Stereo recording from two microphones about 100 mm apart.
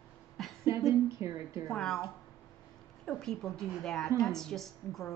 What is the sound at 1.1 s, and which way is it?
Speech, 30° right (ahead or behind).